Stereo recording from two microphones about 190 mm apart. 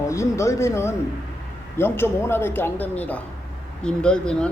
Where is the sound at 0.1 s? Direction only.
15° left (ahead or behind).